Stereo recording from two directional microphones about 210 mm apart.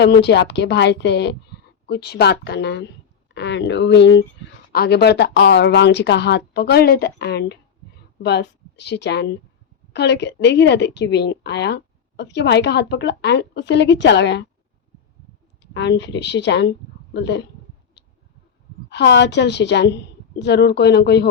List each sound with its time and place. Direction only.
0.0 s a woman's voice: 55° left (ahead or behind)
15.6 s a woman's voice: 55° left (ahead or behind)
18.9 s a woman's voice: 55° left (ahead or behind)